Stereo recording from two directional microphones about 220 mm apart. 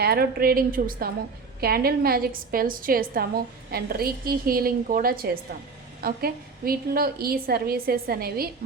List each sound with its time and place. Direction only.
0.0 s a woman's voice: 45° right (ahead or behind)